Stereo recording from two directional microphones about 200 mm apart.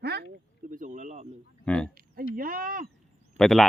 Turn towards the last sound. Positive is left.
turn(degrees=0)  # may be behind; listen again after turning